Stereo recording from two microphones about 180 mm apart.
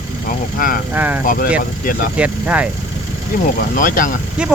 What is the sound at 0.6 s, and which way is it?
Speech, 50° left (ahead or behind).